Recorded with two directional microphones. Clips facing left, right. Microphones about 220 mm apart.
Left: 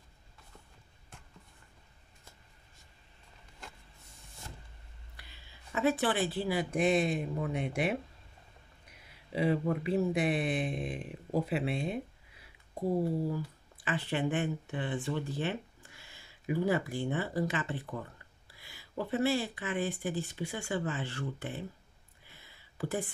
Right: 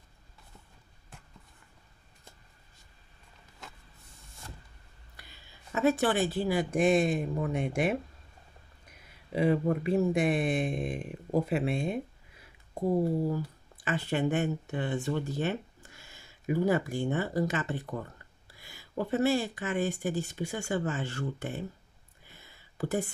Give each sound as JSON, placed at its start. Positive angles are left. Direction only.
{"t": 5.8, "sound": "speech", "side_deg": -45}
{"t": 9.3, "sound": "speech", "side_deg": -45}
{"t": 22.4, "sound": "a sound", "side_deg": -45}